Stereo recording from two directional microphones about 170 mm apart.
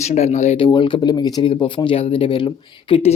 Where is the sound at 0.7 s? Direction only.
30° left (ahead or behind).